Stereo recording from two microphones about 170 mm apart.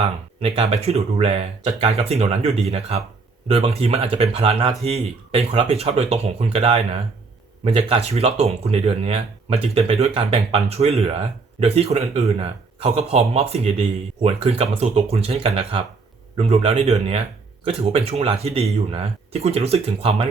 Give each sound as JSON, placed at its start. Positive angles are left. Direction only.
{"t": 0.3, "sound": "speech", "side_deg": -35}